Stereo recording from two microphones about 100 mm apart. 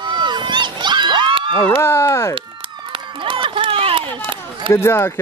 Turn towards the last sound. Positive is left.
turn(degrees=25)  # may be behind; listen again after turning